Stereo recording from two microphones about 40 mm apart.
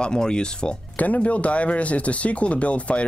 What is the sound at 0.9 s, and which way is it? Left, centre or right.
Speech, left.